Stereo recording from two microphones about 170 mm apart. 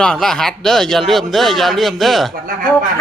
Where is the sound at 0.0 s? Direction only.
5° left (ahead or behind).